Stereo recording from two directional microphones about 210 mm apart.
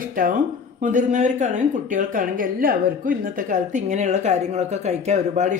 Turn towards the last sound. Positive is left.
turn(degrees=-35)  # may be behind; listen again after turning